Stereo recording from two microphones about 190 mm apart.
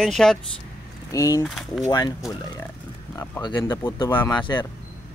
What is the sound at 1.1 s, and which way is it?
Speech, 15° left (ahead or behind).